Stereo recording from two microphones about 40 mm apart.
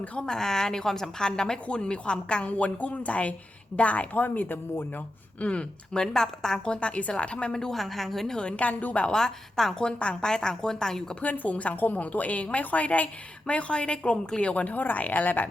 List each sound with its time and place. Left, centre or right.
0.2 s a woman's voice: centre
2.5 s a woman's voice: left
5.4 s a woman's voice: left
6.2 s a woman's voice: centre
6.7 s a woman's voice: left
7.7 s a woman's voice: centre
8.4 s a woman's voice: left
9.0 s a woman's voice: centre
9.8 s a woman's voice: left
11.2 s a woman's voice: left